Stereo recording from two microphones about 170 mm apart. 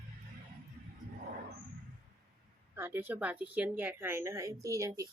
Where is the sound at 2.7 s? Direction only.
15° right (ahead or behind).